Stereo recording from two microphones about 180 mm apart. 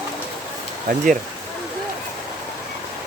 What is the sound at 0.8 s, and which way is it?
Speech, 45° right (ahead or behind).